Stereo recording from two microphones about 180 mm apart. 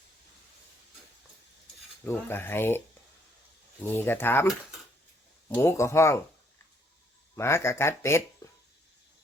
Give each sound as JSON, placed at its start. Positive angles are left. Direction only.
{"t": 2.0, "sound": "speech", "side_deg": 10}
{"t": 3.8, "sound": "speech", "side_deg": 10}
{"t": 5.5, "sound": "speech", "side_deg": 15}
{"t": 7.3, "sound": "speech", "side_deg": 15}
{"t": 8.4, "sound": "a sound", "side_deg": 20}